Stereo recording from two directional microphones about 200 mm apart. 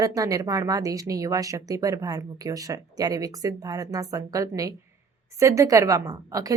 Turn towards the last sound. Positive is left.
turn(degrees=-15)  # may be behind; listen again after turning